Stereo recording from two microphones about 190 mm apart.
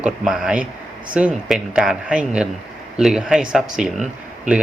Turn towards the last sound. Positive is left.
turn(degrees=-5)  # may be behind; listen again after turning